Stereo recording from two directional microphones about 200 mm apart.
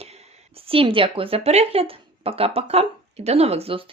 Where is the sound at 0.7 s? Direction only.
25° right (ahead or behind).